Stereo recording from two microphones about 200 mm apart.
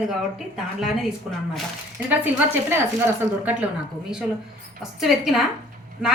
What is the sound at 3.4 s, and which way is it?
Speech, 5° right (ahead or behind).